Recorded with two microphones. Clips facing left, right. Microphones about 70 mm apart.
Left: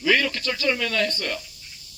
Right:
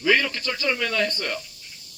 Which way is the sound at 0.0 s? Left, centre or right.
Centre.